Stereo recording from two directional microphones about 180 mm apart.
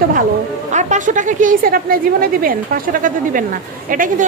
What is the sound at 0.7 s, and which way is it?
A woman's voice, 45° right (ahead or behind).